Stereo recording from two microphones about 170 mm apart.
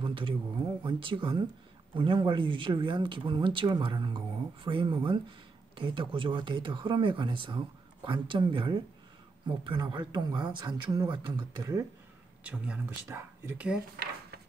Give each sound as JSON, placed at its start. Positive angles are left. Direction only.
{"t": 0.0, "sound": "a sound", "side_deg": -30}
{"t": 0.8, "sound": "speech", "side_deg": -30}
{"t": 12.4, "sound": "speech", "side_deg": -5}
{"t": 14.0, "sound": "speech", "side_deg": -65}